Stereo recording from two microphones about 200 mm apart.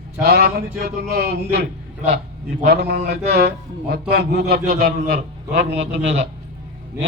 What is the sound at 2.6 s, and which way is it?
A man's voice, 55° right (ahead or behind).